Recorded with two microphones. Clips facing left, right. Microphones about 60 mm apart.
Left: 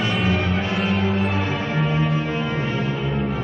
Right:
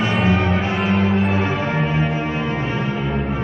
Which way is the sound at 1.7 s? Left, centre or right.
Right.